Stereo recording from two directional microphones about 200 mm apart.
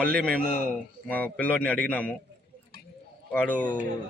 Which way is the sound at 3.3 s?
10° left (ahead or behind).